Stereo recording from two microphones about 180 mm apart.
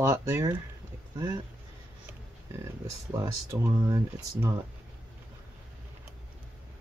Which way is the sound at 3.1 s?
15° right (ahead or behind).